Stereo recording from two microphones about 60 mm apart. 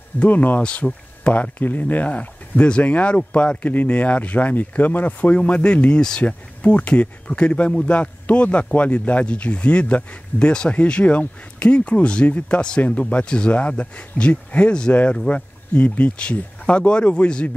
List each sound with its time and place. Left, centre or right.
0.2 s speech: left
0.6 s speech: centre
3.6 s speech: left